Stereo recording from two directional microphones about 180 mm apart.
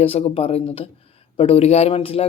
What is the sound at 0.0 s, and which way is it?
Speech, 35° left (ahead or behind).